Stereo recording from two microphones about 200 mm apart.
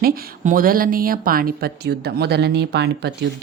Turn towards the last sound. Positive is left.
turn(degrees=-55)  # may be behind; listen again after turning